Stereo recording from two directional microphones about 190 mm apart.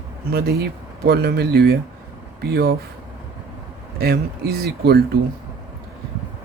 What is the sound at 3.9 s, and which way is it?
Speech, 55° right (ahead or behind).